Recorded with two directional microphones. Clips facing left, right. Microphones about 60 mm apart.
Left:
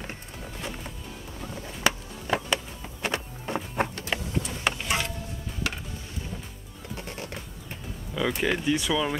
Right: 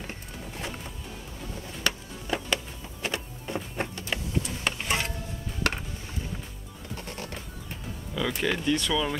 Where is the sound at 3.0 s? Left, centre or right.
Left.